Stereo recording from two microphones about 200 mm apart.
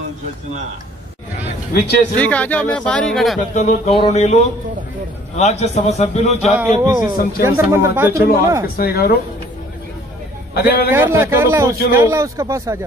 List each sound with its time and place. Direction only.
1.7 s speech: 50° left (ahead or behind)
2.1 s speech: 5° left (ahead or behind)
3.3 s a man's voice: 35° left (ahead or behind)
6.8 s a man's voice: 20° right (ahead or behind)
8.7 s speech: 50° left (ahead or behind)
10.5 s a man's voice: 55° left (ahead or behind)
10.9 s speech: 10° right (ahead or behind)